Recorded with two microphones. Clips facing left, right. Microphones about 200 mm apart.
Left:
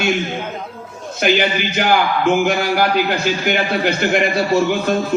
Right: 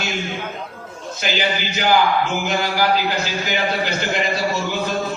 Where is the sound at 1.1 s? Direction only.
55° left (ahead or behind).